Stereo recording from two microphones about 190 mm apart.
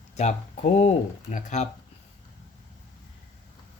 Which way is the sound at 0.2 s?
35° left (ahead or behind).